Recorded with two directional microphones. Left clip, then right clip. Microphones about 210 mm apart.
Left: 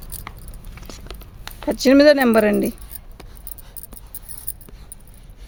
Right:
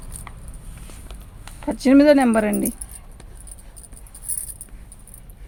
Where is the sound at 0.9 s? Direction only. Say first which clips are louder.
Left 8 dB; 45° left (ahead or behind).